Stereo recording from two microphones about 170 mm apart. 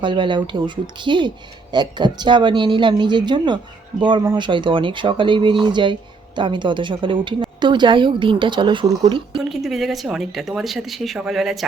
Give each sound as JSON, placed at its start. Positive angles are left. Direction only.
{"t": 0.0, "sound": "speech", "side_deg": -30}
{"t": 9.4, "sound": "speech", "side_deg": 0}